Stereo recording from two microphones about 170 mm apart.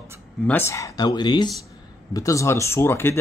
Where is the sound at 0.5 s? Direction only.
15° left (ahead or behind).